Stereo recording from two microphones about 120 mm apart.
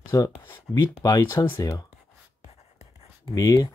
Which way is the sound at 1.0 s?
30° left (ahead or behind).